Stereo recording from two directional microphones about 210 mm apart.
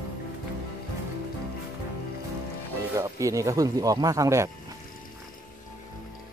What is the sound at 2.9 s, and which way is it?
Speech, 15° right (ahead or behind).